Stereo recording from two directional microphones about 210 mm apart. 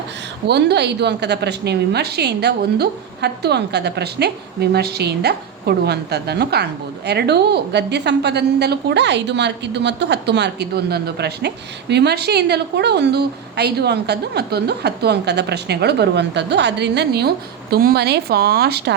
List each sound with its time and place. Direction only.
0.4 s a woman's voice: 50° right (ahead or behind)